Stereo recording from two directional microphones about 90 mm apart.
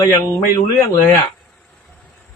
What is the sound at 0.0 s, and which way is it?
Speech, 40° left (ahead or behind).